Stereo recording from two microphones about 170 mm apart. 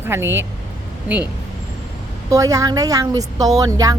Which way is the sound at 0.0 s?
15° right (ahead or behind).